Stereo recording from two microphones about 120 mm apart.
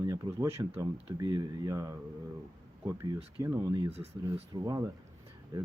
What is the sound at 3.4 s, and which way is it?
Speech, 30° right (ahead or behind).